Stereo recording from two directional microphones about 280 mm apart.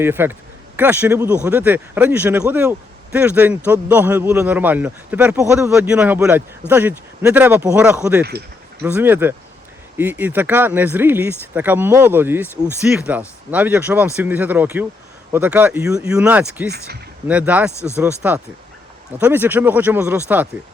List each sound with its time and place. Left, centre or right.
0.0 s a man's voice: centre
16.7 s speech: right
17.2 s speech: centre
17.7 s speech: centre
18.2 s a man's voice: centre